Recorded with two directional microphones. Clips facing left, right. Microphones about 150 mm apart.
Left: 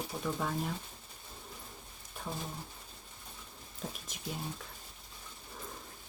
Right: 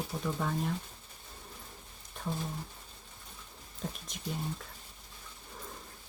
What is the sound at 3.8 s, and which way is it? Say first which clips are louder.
Speech: right 2 dB; centre (ahead or behind).